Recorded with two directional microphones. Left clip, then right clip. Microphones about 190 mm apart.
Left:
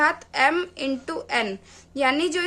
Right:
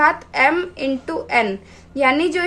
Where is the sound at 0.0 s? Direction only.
30° left (ahead or behind).